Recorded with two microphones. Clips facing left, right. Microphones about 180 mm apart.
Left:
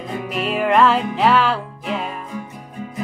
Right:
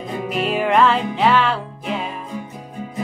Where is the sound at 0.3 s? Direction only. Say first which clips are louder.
Even; centre (ahead or behind).